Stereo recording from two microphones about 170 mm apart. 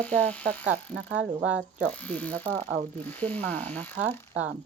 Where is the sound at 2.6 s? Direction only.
35° right (ahead or behind).